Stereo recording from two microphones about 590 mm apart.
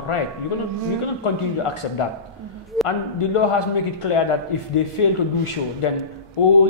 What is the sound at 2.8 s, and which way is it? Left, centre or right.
A man's voice, left.